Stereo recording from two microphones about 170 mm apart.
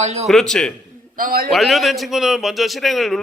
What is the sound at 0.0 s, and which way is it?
Speech, 40° right (ahead or behind).